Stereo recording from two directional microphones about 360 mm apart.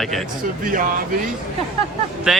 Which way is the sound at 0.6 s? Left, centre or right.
Right.